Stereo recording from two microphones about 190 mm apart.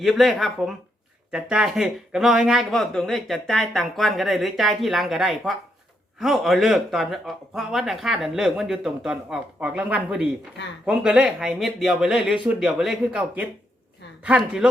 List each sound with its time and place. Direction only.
0.0 s speech: centre (ahead or behind)